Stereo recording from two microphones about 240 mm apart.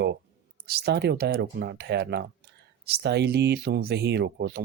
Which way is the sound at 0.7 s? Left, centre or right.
Right.